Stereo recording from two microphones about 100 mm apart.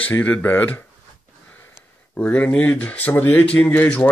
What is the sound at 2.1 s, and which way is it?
Speech, 15° left (ahead or behind).